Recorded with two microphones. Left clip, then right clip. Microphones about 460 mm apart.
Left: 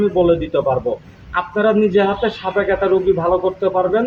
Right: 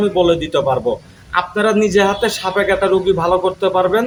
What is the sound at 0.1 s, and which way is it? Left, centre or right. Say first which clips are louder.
Speech: right 1 dB; left.